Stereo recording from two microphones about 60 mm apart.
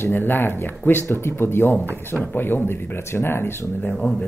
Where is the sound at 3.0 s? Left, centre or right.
Left.